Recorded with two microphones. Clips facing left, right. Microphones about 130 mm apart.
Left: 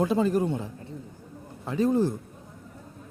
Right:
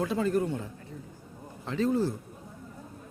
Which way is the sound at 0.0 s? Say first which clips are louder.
Left 4 dB; 20° left (ahead or behind).